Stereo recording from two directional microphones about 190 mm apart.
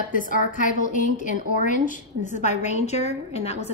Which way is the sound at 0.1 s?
45° left (ahead or behind).